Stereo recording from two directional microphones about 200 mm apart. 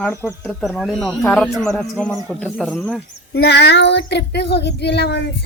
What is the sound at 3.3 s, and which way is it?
Speech, 55° left (ahead or behind).